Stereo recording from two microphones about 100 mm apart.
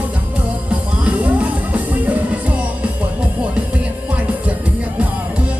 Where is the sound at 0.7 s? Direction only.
15° right (ahead or behind).